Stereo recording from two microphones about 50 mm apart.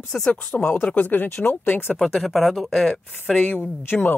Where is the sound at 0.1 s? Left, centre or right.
Left.